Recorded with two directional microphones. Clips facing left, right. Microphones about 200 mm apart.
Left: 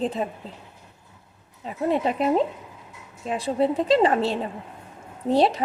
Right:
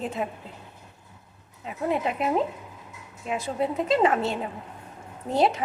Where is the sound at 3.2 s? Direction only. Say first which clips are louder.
Left 4 dB; 35° left (ahead or behind).